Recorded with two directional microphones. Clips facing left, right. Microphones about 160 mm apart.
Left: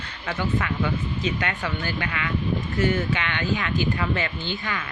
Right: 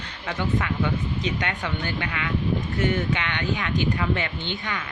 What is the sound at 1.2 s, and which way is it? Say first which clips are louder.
Speech: left 1 dB; 20° right (ahead or behind).